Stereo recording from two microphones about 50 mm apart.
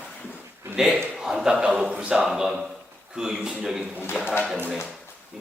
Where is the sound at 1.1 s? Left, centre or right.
Centre.